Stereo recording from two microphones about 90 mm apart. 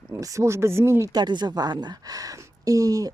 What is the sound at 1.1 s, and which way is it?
Speech, 55° right (ahead or behind).